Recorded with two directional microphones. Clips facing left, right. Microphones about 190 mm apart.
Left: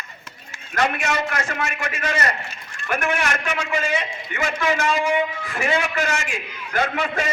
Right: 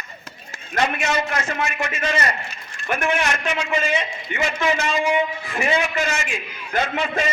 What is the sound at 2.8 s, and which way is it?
A man's voice, 25° right (ahead or behind).